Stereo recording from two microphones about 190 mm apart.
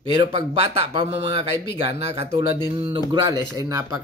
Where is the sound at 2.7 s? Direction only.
30° right (ahead or behind).